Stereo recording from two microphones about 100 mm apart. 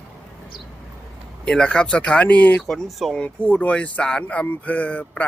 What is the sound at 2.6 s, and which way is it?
Speech, centre (ahead or behind).